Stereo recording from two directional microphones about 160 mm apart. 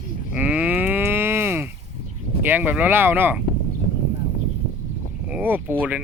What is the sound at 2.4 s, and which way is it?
Speech, 10° right (ahead or behind).